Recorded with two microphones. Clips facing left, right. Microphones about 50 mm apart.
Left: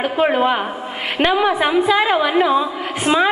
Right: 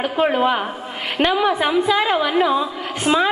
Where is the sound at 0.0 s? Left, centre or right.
Centre.